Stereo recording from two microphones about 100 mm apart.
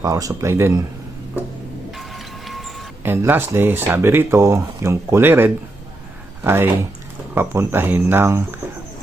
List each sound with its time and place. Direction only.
0.0 s speech: 35° right (ahead or behind)
2.0 s a sound: centre (ahead or behind)
3.0 s speech: 20° right (ahead or behind)